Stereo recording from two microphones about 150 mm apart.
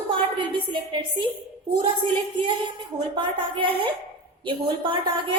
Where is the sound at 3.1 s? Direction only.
35° right (ahead or behind).